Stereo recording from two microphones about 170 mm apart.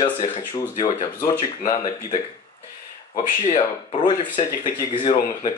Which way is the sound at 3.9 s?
30° left (ahead or behind).